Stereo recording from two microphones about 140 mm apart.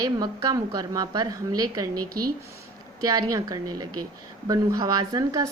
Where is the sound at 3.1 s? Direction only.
25° right (ahead or behind).